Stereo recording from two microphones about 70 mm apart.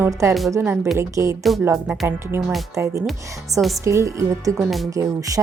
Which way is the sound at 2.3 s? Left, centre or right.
Right.